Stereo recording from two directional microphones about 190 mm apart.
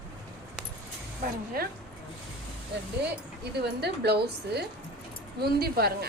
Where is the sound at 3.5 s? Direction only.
60° right (ahead or behind).